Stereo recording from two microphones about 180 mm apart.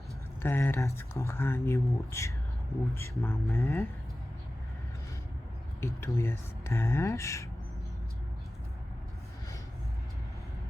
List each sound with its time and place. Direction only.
0.4 s speech: 10° left (ahead or behind)
5.8 s speech: 15° left (ahead or behind)